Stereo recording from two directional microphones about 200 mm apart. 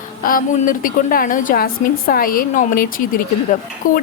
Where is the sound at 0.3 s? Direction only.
45° left (ahead or behind).